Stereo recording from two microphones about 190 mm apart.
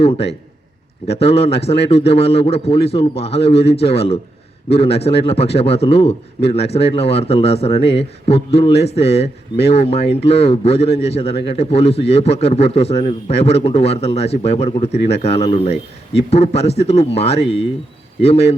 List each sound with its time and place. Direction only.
0.0 s a man's voice: 30° left (ahead or behind)